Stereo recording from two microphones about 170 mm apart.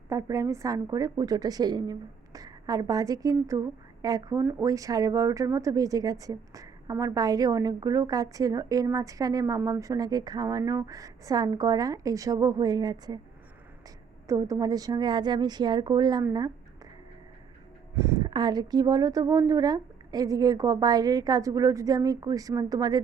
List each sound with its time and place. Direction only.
0.1 s a woman's voice: 20° right (ahead or behind)
14.3 s a woman's voice: 20° right (ahead or behind)
17.9 s a woman's voice: 20° right (ahead or behind)